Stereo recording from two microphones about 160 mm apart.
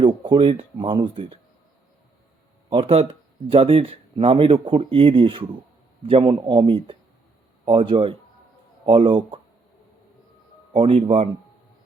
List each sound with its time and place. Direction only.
0.0 s speech: 30° right (ahead or behind)
2.6 s speech: 40° right (ahead or behind)
10.7 s speech: 35° right (ahead or behind)